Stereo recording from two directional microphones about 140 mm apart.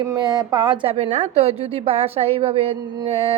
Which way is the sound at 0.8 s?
45° right (ahead or behind).